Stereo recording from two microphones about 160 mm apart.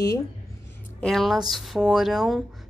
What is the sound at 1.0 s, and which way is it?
A woman's voice, centre (ahead or behind).